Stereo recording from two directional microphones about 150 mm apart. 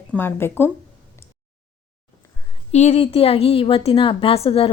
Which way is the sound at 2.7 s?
45° left (ahead or behind).